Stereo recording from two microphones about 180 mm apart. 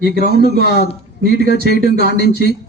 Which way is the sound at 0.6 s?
65° left (ahead or behind).